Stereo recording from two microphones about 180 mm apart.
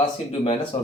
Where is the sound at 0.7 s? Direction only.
35° left (ahead or behind).